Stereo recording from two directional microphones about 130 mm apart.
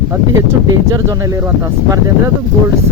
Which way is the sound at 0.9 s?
25° right (ahead or behind).